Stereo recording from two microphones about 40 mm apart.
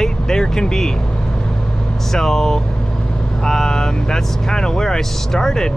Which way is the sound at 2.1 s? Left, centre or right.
Centre.